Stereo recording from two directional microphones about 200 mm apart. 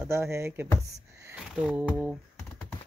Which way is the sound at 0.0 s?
10° right (ahead or behind).